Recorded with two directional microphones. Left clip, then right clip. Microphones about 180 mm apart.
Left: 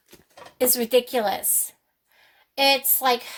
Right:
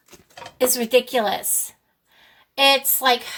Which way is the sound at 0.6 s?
35° left (ahead or behind).